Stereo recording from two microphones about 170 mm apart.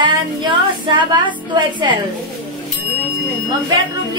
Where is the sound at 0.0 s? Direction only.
30° right (ahead or behind).